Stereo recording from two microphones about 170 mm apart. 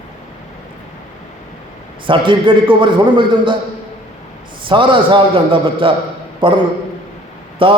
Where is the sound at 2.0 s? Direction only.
30° right (ahead or behind).